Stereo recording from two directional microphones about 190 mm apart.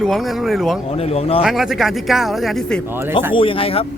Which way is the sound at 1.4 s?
Centre (ahead or behind).